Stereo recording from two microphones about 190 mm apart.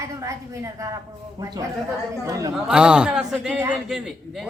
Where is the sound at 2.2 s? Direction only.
20° right (ahead or behind).